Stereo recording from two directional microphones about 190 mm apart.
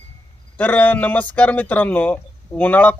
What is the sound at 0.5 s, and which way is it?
Speech, 10° left (ahead or behind).